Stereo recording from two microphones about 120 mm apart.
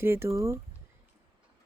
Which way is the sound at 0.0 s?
20° right (ahead or behind).